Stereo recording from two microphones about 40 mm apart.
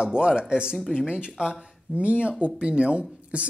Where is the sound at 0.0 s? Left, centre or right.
Right.